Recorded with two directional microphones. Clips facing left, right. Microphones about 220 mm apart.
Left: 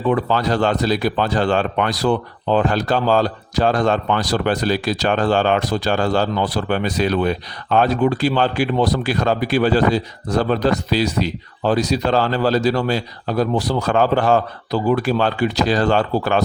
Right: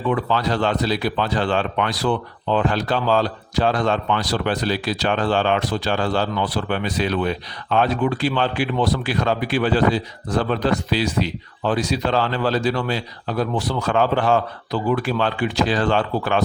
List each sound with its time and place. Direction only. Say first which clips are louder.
0.1 s speech: left 3 dB; 45° left (ahead or behind)